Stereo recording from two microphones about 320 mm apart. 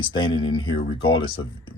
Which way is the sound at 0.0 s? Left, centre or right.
Centre.